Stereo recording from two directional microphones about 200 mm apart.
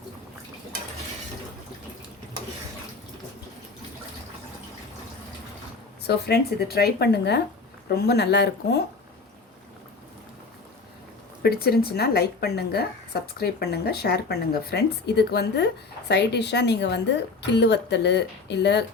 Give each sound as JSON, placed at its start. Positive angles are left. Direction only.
{"t": 6.1, "sound": "a woman's voice", "side_deg": 55}
{"t": 11.4, "sound": "a woman's voice", "side_deg": 50}